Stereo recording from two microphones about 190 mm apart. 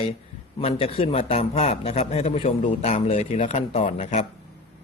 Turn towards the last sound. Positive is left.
turn(degrees=35)  # may be behind; listen again after turning